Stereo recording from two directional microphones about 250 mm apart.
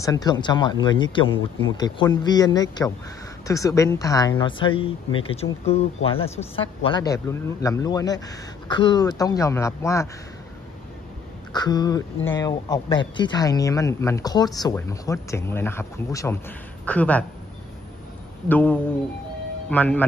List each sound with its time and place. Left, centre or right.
0.0 s speech: centre
11.5 s speech: centre
18.5 s speech: centre